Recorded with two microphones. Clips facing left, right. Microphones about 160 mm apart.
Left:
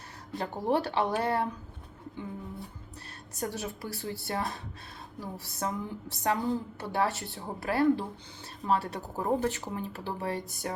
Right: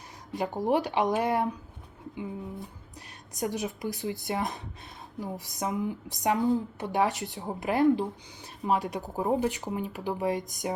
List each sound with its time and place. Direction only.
0.3 s a woman's voice: 10° right (ahead or behind)
3.3 s a woman's voice: 15° right (ahead or behind)